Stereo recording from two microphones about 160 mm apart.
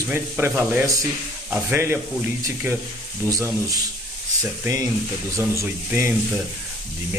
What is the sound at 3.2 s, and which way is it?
Speech, 15° left (ahead or behind).